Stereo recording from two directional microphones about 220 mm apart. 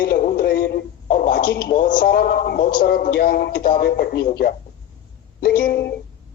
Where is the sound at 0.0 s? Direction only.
40° left (ahead or behind).